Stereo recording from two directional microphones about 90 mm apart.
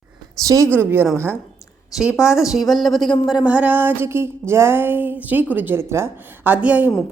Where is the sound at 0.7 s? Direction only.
25° right (ahead or behind).